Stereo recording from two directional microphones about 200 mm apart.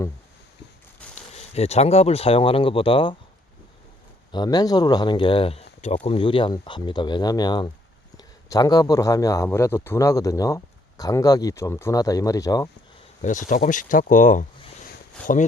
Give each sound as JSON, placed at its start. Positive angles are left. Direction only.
{"t": 1.1, "sound": "speech", "side_deg": 30}
{"t": 4.3, "sound": "a man's voice", "side_deg": 20}
{"t": 13.2, "sound": "speech", "side_deg": 40}